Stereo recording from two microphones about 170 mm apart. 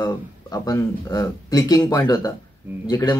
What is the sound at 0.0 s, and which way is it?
Speech, 20° left (ahead or behind).